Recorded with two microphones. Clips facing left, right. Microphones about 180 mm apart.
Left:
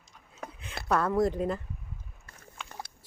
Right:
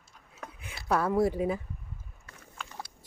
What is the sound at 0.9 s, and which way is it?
Speech, 5° right (ahead or behind).